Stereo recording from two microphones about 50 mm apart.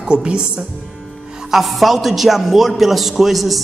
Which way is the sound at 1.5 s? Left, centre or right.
Centre.